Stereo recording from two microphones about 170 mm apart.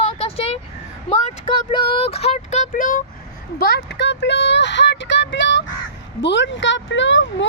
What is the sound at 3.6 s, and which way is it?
Speech, 70° left (ahead or behind).